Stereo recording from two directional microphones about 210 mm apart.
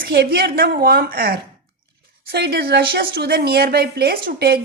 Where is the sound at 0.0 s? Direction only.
45° right (ahead or behind).